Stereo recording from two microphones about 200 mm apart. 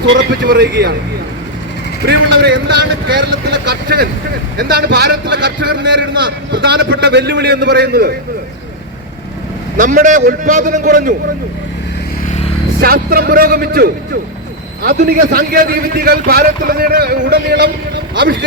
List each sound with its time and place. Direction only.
0.4 s a man's voice: 50° right (ahead or behind)
2.0 s a man's voice: 55° right (ahead or behind)
9.7 s a man's voice: 40° right (ahead or behind)
12.8 s a man's voice: 50° right (ahead or behind)